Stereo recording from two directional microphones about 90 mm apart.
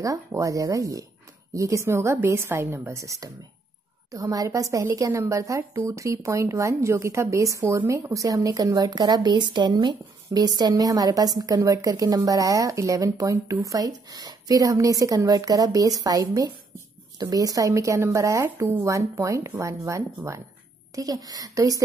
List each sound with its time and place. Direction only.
0.0 s speech: 40° right (ahead or behind)
20.2 s speech: 25° right (ahead or behind)
20.9 s a woman's voice: 45° right (ahead or behind)